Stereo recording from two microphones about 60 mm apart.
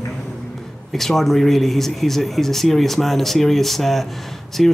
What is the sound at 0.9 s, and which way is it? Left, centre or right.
Speech, centre.